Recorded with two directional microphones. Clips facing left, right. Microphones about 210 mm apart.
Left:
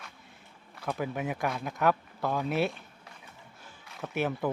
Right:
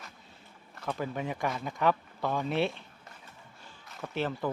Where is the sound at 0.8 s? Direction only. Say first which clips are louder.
Left 1 dB; 10° left (ahead or behind).